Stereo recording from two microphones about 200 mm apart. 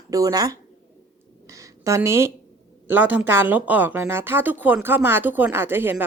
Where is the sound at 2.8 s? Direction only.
10° right (ahead or behind).